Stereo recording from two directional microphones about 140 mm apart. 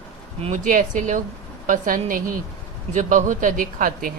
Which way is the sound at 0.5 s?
70° right (ahead or behind).